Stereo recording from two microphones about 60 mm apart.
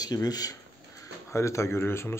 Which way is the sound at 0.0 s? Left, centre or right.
Left.